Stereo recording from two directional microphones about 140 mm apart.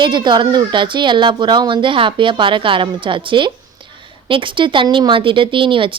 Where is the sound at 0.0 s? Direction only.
35° right (ahead or behind).